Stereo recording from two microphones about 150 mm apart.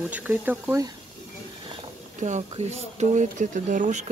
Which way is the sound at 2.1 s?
50° right (ahead or behind).